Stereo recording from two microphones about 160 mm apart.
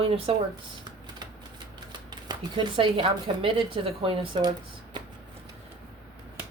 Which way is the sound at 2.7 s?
35° right (ahead or behind).